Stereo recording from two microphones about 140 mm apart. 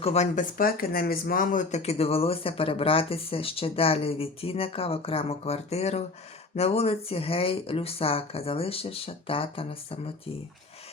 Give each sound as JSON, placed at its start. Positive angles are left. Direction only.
{"t": 0.0, "sound": "speech", "side_deg": 50}
{"t": 0.5, "sound": "speech", "side_deg": 90}